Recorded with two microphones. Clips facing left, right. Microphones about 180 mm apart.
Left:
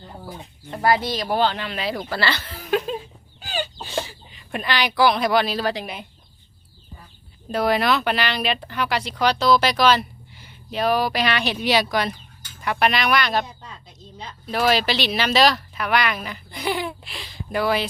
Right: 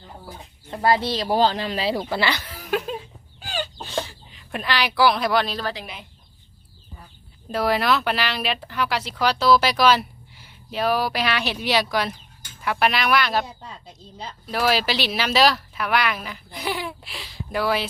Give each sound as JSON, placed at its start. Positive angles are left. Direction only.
{"t": 0.7, "sound": "speech", "side_deg": -25}
{"t": 2.0, "sound": "chuckle", "side_deg": -20}
{"t": 3.4, "sound": "chicken", "side_deg": 0}
{"t": 5.6, "sound": "speech", "side_deg": 15}
{"t": 7.5, "sound": "speech", "side_deg": 0}